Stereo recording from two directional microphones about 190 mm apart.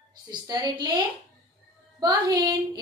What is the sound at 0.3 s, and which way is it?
A woman's voice, 20° right (ahead or behind).